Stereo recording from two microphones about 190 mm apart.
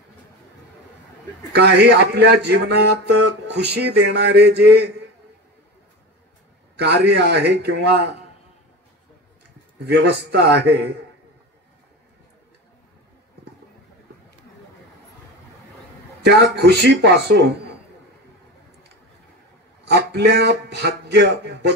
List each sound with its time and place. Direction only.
1.5 s mantra: 60° right (ahead or behind)
6.8 s mantra: 60° right (ahead or behind)
9.8 s mantra: 60° right (ahead or behind)
16.3 s mantra: 60° right (ahead or behind)
19.8 s speech: 60° right (ahead or behind)